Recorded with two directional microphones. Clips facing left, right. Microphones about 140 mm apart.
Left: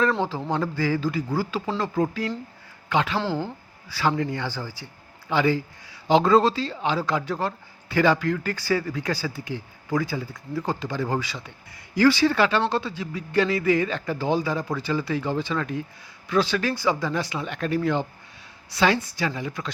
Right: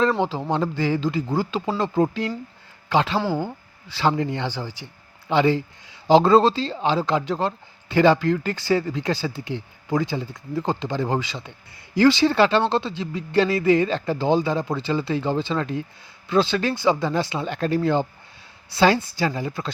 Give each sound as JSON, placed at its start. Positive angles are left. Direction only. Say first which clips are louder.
{"t": 0.2, "sound": "speech", "louder": "right 3 dB", "side_deg": -20}
{"t": 3.2, "sound": "speech", "louder": "right 3 dB", "side_deg": -10}
{"t": 3.4, "sound": "speech", "louder": "right 3 dB", "side_deg": -25}